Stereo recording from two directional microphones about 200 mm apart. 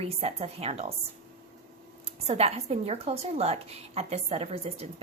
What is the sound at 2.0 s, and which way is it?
A woman's voice, 30° right (ahead or behind).